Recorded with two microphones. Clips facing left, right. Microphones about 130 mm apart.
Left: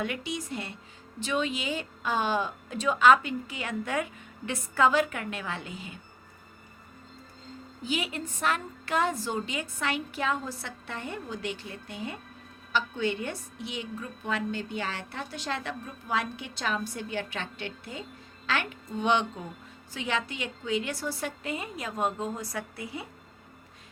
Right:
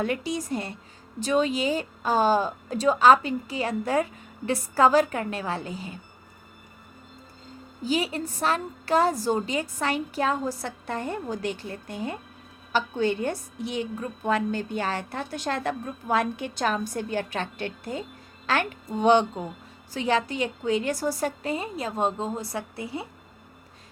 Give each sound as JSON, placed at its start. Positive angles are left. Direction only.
{"t": 0.0, "sound": "speech", "side_deg": -40}
{"t": 7.9, "sound": "a woman's voice", "side_deg": -35}